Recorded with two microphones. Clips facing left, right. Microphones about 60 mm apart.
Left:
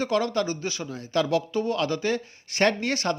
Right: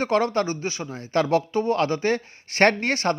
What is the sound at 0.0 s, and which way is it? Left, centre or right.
Speech, right.